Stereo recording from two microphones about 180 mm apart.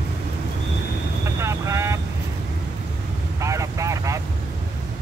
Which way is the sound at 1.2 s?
15° right (ahead or behind).